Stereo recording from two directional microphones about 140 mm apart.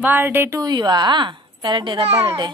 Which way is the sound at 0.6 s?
30° right (ahead or behind).